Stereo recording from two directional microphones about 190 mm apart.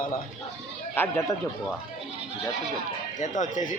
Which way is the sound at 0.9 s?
10° left (ahead or behind).